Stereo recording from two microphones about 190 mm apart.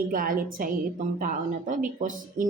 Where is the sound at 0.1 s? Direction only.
45° right (ahead or behind).